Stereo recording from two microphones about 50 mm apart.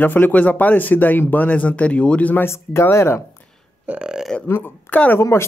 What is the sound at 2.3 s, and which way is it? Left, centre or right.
Speech, left.